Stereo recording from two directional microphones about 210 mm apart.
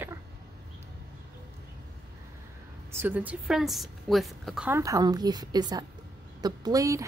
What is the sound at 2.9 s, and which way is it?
A woman's voice, 10° right (ahead or behind).